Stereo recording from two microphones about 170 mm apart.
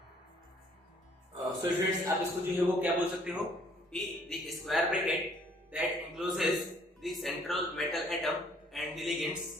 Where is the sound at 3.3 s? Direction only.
5° right (ahead or behind).